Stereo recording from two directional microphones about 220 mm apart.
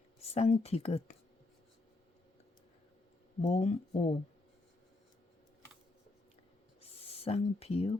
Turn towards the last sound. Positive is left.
turn(degrees=25)  # may be behind; listen again after turning